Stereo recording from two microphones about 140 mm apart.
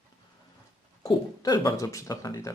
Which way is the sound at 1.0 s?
30° left (ahead or behind).